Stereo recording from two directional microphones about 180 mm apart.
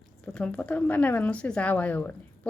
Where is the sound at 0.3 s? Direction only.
5° left (ahead or behind).